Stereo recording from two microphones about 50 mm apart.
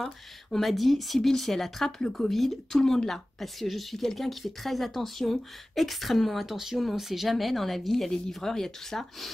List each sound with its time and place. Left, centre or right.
0.0 s a woman's voice: centre